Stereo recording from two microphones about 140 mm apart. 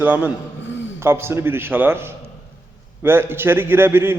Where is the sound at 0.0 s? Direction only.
10° right (ahead or behind).